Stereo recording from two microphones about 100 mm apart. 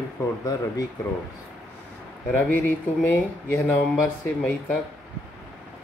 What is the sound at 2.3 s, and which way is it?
Speech, 20° left (ahead or behind).